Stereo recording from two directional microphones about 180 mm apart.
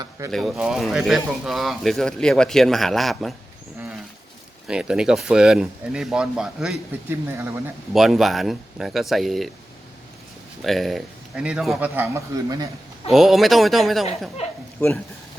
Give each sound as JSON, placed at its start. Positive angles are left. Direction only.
{"t": 0.3, "sound": "speech", "side_deg": 0}
{"t": 4.6, "sound": "speech", "side_deg": -5}
{"t": 7.9, "sound": "speech", "side_deg": 0}
{"t": 10.6, "sound": "speech", "side_deg": 0}
{"t": 11.9, "sound": "speech", "side_deg": -15}
{"t": 13.1, "sound": "speech", "side_deg": 0}
{"t": 14.8, "sound": "speech", "side_deg": 10}